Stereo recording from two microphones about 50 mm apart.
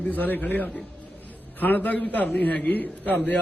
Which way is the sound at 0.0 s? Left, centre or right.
Left.